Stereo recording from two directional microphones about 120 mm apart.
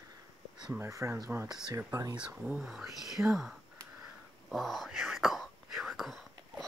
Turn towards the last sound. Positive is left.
turn(degrees=0)  # may be behind; listen again after turning